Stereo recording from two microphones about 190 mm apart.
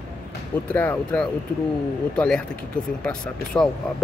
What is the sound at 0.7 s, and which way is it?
Speech, 5° left (ahead or behind).